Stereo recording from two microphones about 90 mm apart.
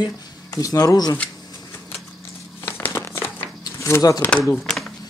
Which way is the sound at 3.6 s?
40° left (ahead or behind).